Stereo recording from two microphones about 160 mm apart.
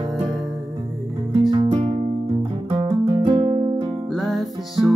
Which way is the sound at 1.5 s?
30° right (ahead or behind).